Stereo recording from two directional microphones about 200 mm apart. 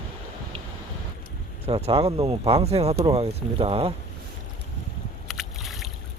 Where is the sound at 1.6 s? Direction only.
30° right (ahead or behind).